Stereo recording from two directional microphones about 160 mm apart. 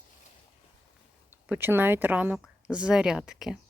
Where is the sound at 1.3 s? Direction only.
15° right (ahead or behind).